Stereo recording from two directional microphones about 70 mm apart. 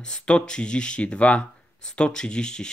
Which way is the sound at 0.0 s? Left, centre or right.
Centre.